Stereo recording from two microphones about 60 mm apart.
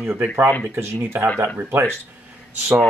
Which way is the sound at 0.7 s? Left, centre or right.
Right.